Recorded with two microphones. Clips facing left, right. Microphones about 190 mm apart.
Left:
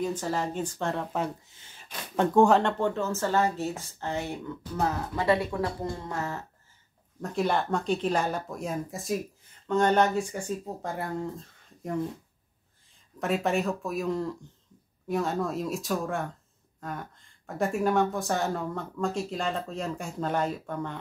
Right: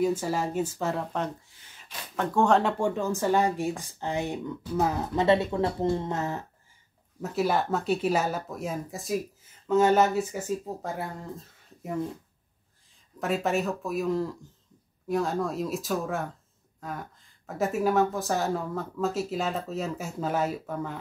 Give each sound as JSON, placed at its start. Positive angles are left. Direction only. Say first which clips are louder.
{"t": 0.0, "sound": "speech", "louder": "right 3 dB", "side_deg": -10}
{"t": 2.6, "sound": "speech", "louder": "right 1 dB", "side_deg": -15}
{"t": 7.2, "sound": "speech", "louder": "right 1 dB", "side_deg": -5}
{"t": 13.2, "sound": "speech", "louder": "even", "side_deg": 0}